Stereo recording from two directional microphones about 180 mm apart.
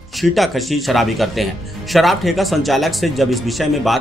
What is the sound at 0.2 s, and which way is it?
A woman's voice, centre (ahead or behind).